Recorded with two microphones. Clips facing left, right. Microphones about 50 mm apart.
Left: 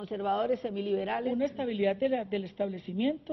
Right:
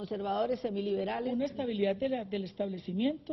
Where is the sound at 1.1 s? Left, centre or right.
Centre.